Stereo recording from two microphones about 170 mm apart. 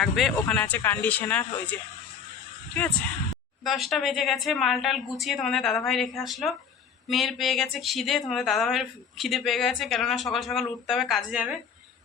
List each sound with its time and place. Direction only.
0.0 s speech: centre (ahead or behind)
3.6 s a woman's voice: centre (ahead or behind)